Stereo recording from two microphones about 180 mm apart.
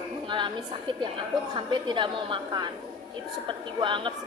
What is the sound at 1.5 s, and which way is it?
A woman's voice, 25° right (ahead or behind).